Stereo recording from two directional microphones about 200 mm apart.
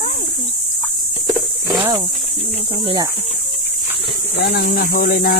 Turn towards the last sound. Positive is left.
turn(degrees=45)  # may be behind; listen again after turning